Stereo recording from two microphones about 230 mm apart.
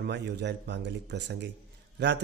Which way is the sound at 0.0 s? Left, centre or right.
Right.